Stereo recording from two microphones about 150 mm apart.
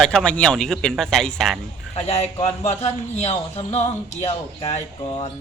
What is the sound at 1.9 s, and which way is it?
A man's voice, 45° left (ahead or behind).